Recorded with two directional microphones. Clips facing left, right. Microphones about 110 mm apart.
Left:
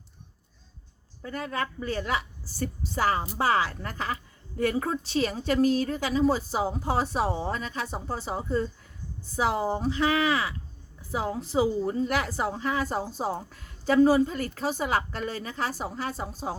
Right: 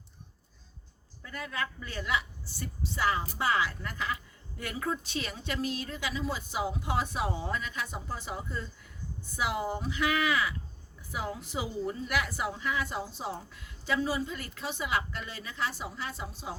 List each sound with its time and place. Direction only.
1.2 s a woman's voice: 35° left (ahead or behind)